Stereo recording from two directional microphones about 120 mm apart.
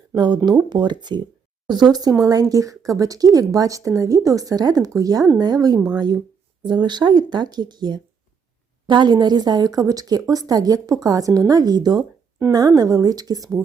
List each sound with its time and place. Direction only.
0.1 s speech: 40° right (ahead or behind)